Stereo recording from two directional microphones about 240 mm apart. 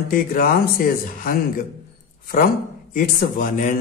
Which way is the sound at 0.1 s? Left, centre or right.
Left.